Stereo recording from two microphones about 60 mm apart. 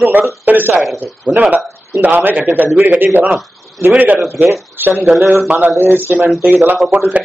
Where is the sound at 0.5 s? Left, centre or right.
Right.